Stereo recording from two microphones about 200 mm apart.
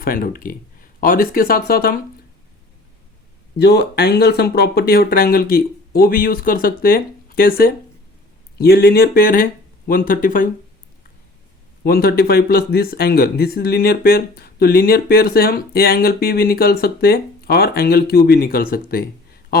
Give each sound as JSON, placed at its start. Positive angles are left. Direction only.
{"t": 0.0, "sound": "speech", "side_deg": 45}
{"t": 3.6, "sound": "speech", "side_deg": 55}
{"t": 11.8, "sound": "speech", "side_deg": 50}